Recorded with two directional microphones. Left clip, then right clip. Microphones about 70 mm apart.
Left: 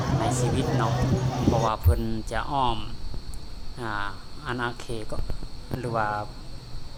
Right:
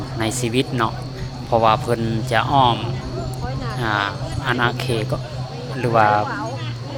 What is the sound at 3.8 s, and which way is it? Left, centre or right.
Speech, right.